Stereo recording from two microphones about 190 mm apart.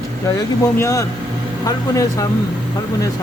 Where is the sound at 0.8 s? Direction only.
15° left (ahead or behind).